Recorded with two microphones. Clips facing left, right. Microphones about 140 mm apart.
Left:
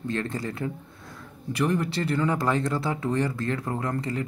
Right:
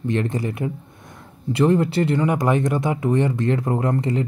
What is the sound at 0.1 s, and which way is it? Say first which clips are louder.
Speech: right 7 dB; 20° right (ahead or behind).